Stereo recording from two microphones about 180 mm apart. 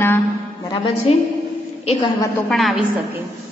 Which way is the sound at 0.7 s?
30° left (ahead or behind).